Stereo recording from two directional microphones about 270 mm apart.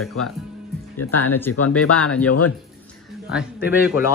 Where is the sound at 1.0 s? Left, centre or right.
Left.